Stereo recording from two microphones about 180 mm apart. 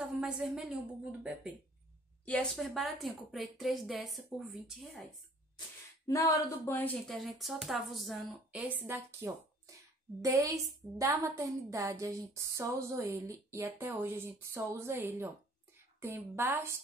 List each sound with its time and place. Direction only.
0.0 s a woman's voice: 5° right (ahead or behind)
2.2 s speech: 5° left (ahead or behind)
6.0 s a woman's voice: 15° left (ahead or behind); by 16.7 s 15° right (ahead or behind)